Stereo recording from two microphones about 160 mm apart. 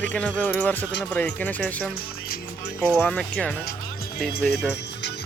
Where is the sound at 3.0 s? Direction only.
5° left (ahead or behind).